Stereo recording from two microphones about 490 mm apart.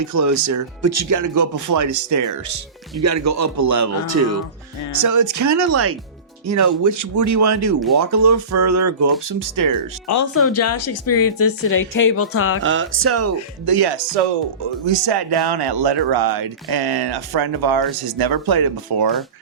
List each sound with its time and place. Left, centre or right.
0.0 s speech: right
10.1 s a woman's voice: left
12.6 s speech: right
13.7 s speech: right